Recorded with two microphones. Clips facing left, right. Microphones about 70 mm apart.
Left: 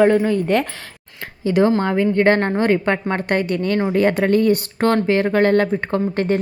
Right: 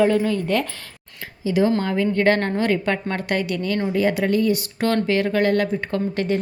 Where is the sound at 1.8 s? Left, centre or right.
Left.